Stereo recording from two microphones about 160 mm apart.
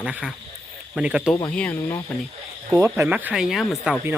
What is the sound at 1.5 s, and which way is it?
Cricket, 10° left (ahead or behind).